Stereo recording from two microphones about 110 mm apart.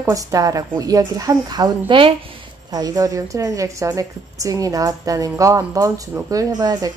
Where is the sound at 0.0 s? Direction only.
30° right (ahead or behind).